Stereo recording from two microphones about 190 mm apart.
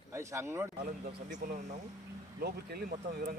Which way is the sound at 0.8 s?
45° right (ahead or behind).